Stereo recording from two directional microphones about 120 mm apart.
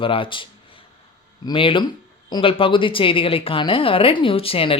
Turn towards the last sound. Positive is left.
turn(degrees=50)  # may be behind; listen again after turning